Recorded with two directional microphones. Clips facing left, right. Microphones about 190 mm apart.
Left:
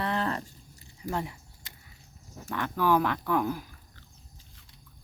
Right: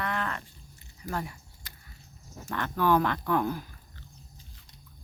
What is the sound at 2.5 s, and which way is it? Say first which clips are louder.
Speech: even; 10° left (ahead or behind).